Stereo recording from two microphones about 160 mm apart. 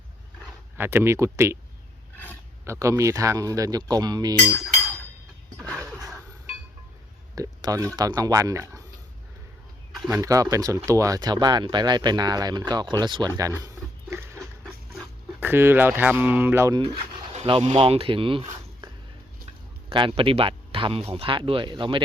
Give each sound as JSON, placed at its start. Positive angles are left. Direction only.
{"t": 0.8, "sound": "speech", "side_deg": -15}
{"t": 2.1, "sound": "a sound", "side_deg": 10}
{"t": 2.6, "sound": "speech", "side_deg": -20}
{"t": 7.3, "sound": "speech", "side_deg": -20}
{"t": 10.2, "sound": "speech", "side_deg": -20}
{"t": 13.6, "sound": "a sound", "side_deg": -20}
{"t": 15.4, "sound": "speech", "side_deg": -15}
{"t": 17.3, "sound": "speech", "side_deg": -40}